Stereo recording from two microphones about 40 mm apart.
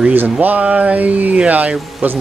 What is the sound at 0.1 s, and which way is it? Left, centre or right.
Speech, right.